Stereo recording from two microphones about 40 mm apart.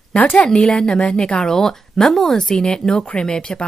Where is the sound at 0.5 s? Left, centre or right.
Centre.